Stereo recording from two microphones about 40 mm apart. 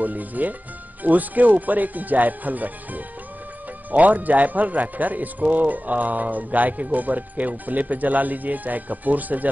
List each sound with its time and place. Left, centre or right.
0.0 s a man's voice: right